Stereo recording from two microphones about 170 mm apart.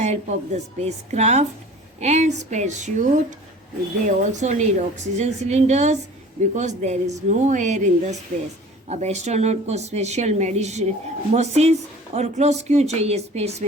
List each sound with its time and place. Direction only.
0.0 s a woman's voice: 40° right (ahead or behind)
8.9 s speech: 40° right (ahead or behind)